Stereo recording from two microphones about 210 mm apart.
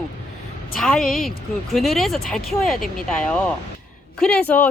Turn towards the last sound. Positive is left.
turn(degrees=10)  # may be behind; listen again after turning